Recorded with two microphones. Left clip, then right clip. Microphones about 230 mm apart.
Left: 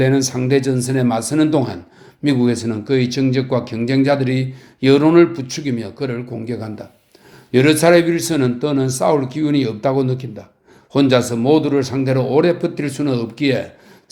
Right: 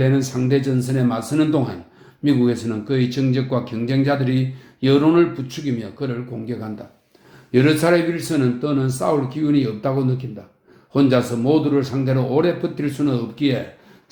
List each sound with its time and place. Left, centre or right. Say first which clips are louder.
0.0 s a man's voice: left 4 dB; left